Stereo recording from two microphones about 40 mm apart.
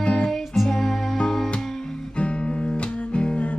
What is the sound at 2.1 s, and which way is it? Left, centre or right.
Guitar, left.